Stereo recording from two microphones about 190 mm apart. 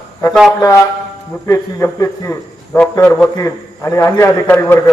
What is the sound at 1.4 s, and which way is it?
A man's voice, 15° left (ahead or behind).